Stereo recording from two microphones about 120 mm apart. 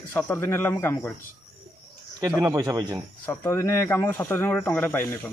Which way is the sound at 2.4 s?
30° right (ahead or behind).